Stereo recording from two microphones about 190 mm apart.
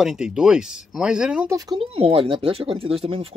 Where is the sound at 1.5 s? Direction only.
25° right (ahead or behind).